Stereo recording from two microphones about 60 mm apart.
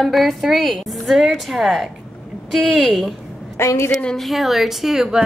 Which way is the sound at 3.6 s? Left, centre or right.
Left.